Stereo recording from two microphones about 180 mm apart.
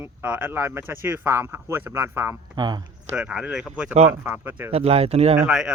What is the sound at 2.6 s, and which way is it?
Speech, 25° right (ahead or behind).